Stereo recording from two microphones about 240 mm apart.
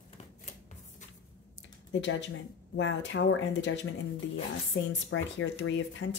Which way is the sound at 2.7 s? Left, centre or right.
Left.